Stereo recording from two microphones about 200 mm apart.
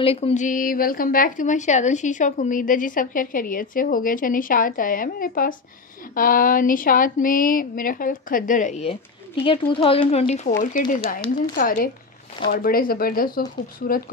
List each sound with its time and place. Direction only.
0.0 s a woman's voice: 30° left (ahead or behind); by 14.0 s 45° left (ahead or behind)